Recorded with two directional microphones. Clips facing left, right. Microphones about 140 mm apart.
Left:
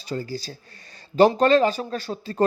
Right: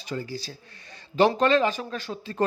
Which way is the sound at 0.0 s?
35° left (ahead or behind).